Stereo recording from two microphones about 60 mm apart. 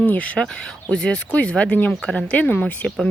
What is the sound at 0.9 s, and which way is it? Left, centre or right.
Speech, centre.